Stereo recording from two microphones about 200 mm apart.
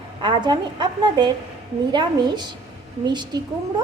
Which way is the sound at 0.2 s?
25° right (ahead or behind).